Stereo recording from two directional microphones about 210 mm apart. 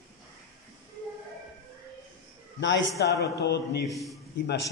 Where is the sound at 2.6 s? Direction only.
55° left (ahead or behind).